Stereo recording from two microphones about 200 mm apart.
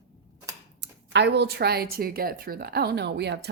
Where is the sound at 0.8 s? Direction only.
60° right (ahead or behind).